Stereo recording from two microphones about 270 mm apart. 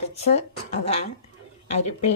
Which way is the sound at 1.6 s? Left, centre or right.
Left.